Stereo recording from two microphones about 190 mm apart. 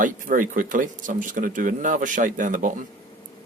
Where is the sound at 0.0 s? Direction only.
45° right (ahead or behind).